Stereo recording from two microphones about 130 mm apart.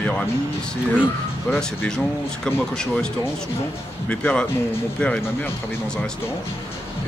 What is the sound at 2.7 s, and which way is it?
Speech, 5° left (ahead or behind).